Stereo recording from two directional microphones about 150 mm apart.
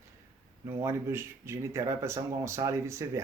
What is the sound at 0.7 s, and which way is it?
Speech, 15° right (ahead or behind).